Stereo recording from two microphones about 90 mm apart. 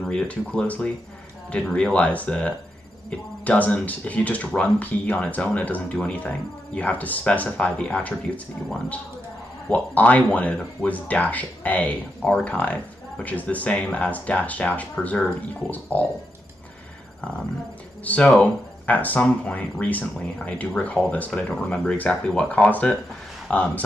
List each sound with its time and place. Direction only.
0.0 s speech: 5° left (ahead or behind)
0.3 s speech: 15° left (ahead or behind)
9.7 s speech: 15° left (ahead or behind)
18.0 s speech: 15° left (ahead or behind)